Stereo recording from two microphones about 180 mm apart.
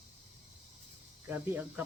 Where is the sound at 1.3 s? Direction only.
10° right (ahead or behind).